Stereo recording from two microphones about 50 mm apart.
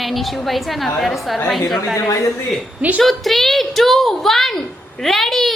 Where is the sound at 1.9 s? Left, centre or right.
Left.